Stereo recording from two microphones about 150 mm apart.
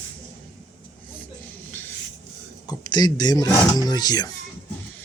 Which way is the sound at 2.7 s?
30° left (ahead or behind).